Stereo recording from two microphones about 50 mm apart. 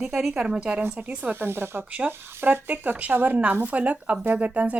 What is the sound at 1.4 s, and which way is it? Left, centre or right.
A woman's voice, right.